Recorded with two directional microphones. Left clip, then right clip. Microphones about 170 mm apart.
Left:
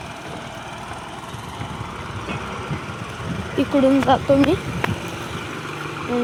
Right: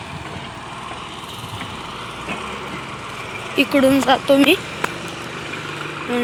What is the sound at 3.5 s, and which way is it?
Speech, 10° left (ahead or behind).